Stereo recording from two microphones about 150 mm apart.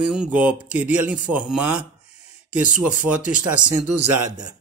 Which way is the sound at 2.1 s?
45° left (ahead or behind).